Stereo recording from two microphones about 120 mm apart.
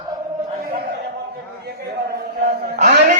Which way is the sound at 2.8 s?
90° right.